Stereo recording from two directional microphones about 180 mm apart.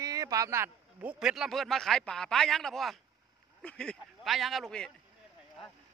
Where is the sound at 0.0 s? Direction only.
20° right (ahead or behind).